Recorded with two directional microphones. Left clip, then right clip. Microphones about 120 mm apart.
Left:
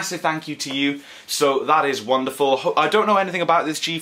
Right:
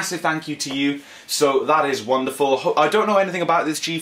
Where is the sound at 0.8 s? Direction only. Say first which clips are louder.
Left 1 dB; 55° left (ahead or behind).